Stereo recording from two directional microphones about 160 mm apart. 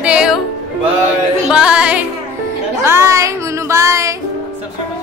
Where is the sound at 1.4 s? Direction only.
5° right (ahead or behind).